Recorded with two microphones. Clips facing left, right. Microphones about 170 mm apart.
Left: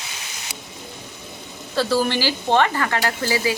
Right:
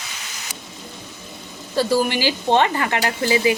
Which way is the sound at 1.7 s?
15° right (ahead or behind).